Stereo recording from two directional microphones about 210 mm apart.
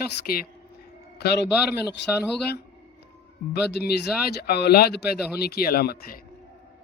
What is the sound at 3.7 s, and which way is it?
A man's voice, 50° left (ahead or behind).